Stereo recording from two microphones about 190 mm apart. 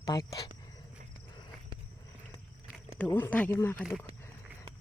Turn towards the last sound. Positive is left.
turn(degrees=15)  # may be behind; listen again after turning